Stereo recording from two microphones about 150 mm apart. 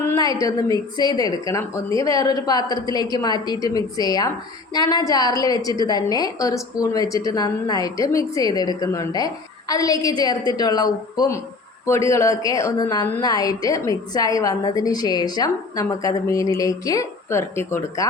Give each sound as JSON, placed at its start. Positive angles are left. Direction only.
{"t": 0.0, "sound": "a woman's voice", "side_deg": 20}